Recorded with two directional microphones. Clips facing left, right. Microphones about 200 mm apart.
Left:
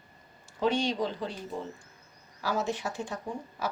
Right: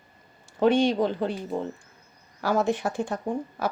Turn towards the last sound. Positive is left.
turn(degrees=-55)  # may be behind; listen again after turning